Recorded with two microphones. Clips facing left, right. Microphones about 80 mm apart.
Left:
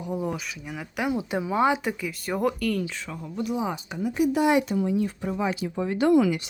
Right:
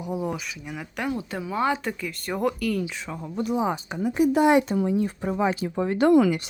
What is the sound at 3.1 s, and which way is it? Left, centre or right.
Speech, right.